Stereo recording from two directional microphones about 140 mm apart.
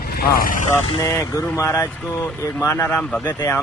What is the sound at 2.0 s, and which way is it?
Speech, 5° left (ahead or behind).